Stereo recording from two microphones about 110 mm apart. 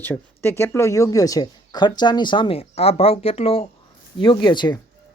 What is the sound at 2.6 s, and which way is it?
Speech, 65° left (ahead or behind).